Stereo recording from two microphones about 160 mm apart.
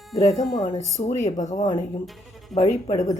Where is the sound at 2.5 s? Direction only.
25° left (ahead or behind).